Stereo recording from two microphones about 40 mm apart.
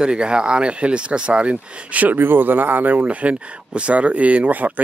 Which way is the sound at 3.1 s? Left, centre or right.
Right.